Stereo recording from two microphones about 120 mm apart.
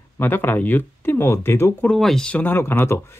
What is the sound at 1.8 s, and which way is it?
Speech, 5° left (ahead or behind).